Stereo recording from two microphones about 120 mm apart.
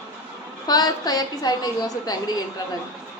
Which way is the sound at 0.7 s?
30° left (ahead or behind).